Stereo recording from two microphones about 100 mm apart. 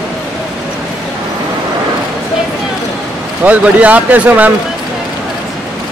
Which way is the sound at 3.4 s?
15° right (ahead or behind).